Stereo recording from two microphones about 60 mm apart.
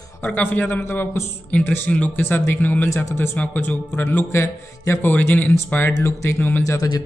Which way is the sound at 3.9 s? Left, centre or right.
Left.